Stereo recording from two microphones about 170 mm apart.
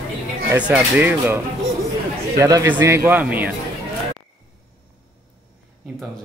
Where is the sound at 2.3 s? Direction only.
20° right (ahead or behind).